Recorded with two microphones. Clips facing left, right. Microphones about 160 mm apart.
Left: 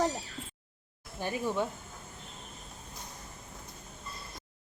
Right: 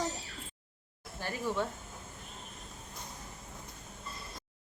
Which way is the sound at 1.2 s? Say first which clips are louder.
Left 2 dB; 15° left (ahead or behind).